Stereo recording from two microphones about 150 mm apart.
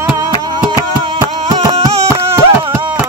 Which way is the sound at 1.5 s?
25° right (ahead or behind).